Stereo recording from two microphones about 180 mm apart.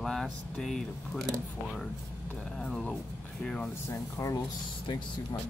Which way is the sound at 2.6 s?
5° left (ahead or behind).